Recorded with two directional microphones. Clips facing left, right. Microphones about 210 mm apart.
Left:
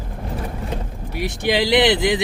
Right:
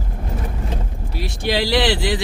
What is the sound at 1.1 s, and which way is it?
Speech, 20° left (ahead or behind).